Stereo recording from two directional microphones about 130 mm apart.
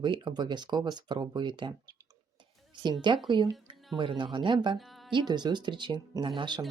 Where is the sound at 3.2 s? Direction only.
35° right (ahead or behind).